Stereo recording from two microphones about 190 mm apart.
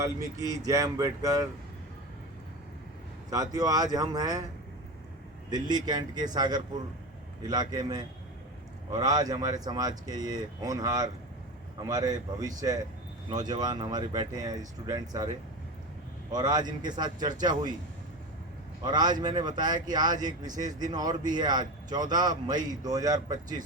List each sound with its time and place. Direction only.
0.0 s speech: 20° right (ahead or behind)
3.2 s speech: 20° right (ahead or behind)
5.5 s speech: 20° right (ahead or behind)
16.3 s speech: 20° right (ahead or behind)
18.9 s speech: 20° right (ahead or behind)